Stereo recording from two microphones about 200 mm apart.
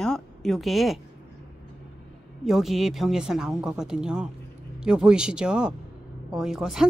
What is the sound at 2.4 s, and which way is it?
Speech, centre (ahead or behind).